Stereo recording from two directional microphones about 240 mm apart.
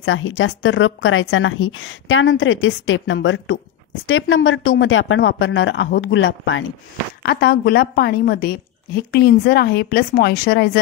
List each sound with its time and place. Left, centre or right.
0.0 s a woman's voice: left
7.2 s a woman's voice: left